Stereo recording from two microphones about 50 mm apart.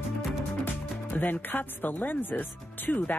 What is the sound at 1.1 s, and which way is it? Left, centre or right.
Speech, left.